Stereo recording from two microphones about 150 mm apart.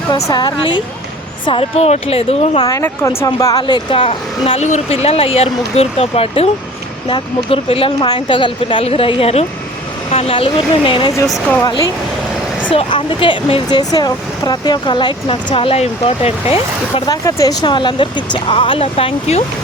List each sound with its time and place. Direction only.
0.3 s speech: 30° left (ahead or behind)
1.5 s speech: 40° left (ahead or behind)
2.6 s speech: 20° left (ahead or behind); by 11.1 s 35° left (ahead or behind)
12.7 s speech: 35° left (ahead or behind)
17.1 s speech: 25° left (ahead or behind); by 19.5 s 45° left (ahead or behind)